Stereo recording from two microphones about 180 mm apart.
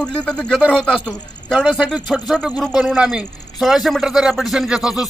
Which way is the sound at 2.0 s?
Centre (ahead or behind).